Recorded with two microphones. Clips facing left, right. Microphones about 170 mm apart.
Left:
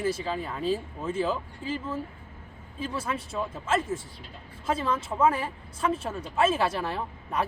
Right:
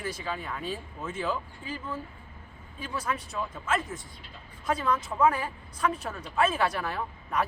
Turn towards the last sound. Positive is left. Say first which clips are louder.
# even
turn(degrees=30)  # may be behind; listen again after turning